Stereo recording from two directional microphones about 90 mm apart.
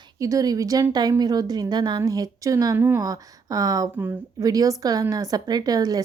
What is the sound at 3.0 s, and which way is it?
A woman's voice, 40° right (ahead or behind).